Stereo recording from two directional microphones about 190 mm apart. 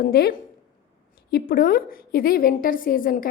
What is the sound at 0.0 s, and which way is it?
A woman's voice, 50° left (ahead or behind).